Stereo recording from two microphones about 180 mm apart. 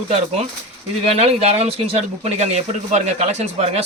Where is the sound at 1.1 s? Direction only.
35° right (ahead or behind).